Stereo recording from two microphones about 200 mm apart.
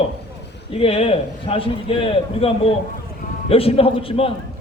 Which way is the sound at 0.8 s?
30° left (ahead or behind).